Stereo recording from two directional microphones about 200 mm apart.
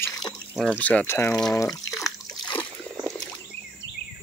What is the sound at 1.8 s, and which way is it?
Splash, 15° left (ahead or behind).